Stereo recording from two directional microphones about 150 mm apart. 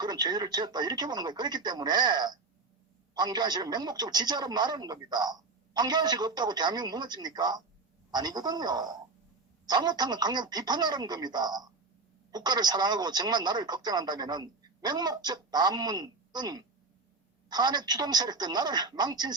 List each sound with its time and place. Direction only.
0.0 s a man's voice: 25° right (ahead or behind)